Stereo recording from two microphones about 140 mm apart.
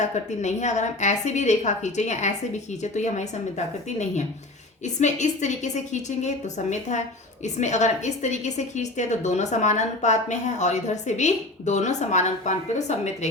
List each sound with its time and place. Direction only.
0.0 s a woman's voice: 55° left (ahead or behind)
4.9 s a woman's voice: 55° left (ahead or behind)